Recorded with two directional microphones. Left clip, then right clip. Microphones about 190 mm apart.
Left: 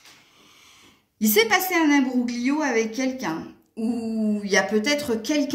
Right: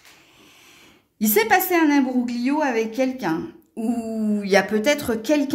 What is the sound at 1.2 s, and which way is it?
A woman's voice, 40° right (ahead or behind).